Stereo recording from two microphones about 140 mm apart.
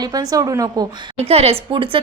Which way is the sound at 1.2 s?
45° right (ahead or behind).